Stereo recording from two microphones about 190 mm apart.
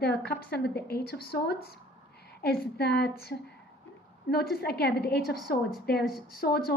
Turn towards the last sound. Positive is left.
turn(degrees=50)  # may be behind; listen again after turning